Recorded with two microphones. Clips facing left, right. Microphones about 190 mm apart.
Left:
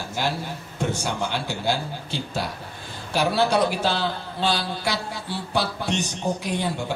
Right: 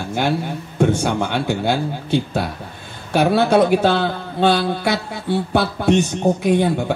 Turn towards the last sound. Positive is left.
turn(degrees=-55)  # may be behind; listen again after turning